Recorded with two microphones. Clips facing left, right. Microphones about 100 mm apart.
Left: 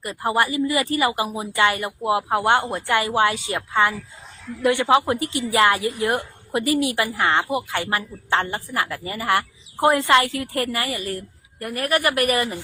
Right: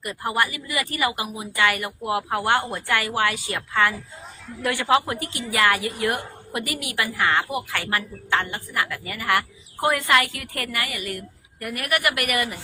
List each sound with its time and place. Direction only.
0.0 s a woman's voice: 25° left (ahead or behind)